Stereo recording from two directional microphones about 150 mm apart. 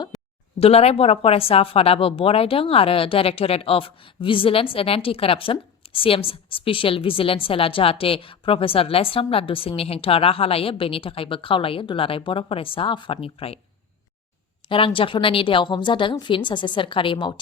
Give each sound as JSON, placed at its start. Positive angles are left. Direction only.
{"t": 0.1, "sound": "a sound", "side_deg": 0}
{"t": 0.6, "sound": "speech", "side_deg": 40}
{"t": 14.7, "sound": "speech", "side_deg": 35}